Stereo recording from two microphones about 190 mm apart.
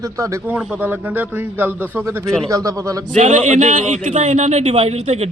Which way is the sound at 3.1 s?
40° right (ahead or behind).